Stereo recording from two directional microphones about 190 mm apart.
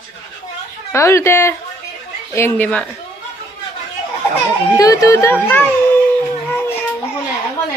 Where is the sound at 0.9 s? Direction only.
15° left (ahead or behind).